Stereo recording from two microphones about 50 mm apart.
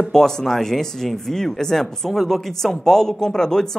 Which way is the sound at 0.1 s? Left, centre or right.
Centre.